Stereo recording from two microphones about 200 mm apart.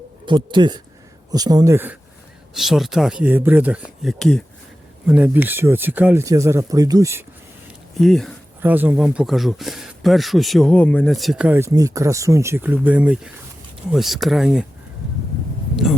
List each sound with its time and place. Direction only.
0.3 s speech: 25° right (ahead or behind)
7.9 s speech: centre (ahead or behind)
8.6 s speech: 10° right (ahead or behind)
15.7 s a sound: centre (ahead or behind)